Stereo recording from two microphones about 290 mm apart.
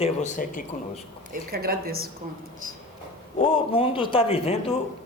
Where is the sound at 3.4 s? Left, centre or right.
Centre.